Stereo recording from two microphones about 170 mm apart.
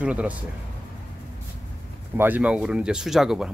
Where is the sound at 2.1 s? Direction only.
10° right (ahead or behind).